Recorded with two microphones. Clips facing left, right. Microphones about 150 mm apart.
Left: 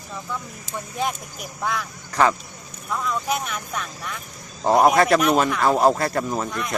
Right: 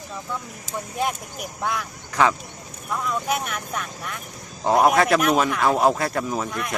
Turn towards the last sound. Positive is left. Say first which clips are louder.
# left 1 dB
turn(degrees=-5)  # may be behind; listen again after turning